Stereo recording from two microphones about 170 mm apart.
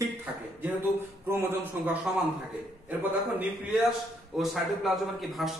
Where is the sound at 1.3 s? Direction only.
15° right (ahead or behind).